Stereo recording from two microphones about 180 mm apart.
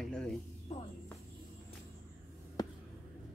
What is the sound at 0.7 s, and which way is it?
Speech, 35° left (ahead or behind).